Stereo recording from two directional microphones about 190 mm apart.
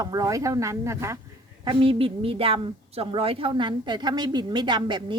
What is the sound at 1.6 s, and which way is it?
A woman's voice, 30° right (ahead or behind).